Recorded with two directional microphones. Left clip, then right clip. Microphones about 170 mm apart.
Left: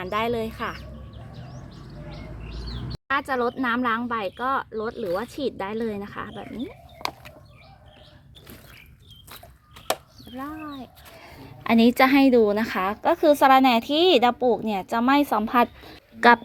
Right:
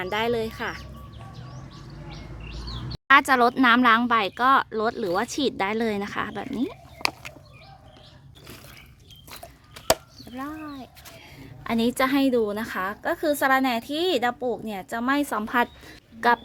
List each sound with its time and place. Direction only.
0.0 s speech: 20° right (ahead or behind)
3.1 s speech: 45° right (ahead or behind)
7.0 s chicken: 40° right (ahead or behind)
9.7 s chop: 20° right (ahead or behind)
10.5 s speech: 5° right (ahead or behind)
11.6 s a woman's voice: 15° left (ahead or behind); by 16.0 s 10° right (ahead or behind)